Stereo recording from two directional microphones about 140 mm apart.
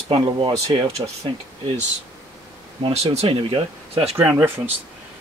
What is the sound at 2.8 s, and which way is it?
Speech, 40° right (ahead or behind).